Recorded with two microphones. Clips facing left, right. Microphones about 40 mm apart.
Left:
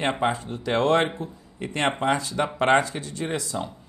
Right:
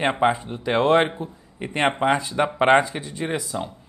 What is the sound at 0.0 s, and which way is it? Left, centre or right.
A man's voice, centre.